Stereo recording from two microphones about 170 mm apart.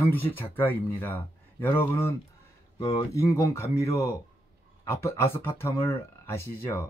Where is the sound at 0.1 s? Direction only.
10° left (ahead or behind).